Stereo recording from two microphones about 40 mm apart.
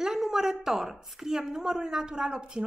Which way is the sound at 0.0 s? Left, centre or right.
Centre.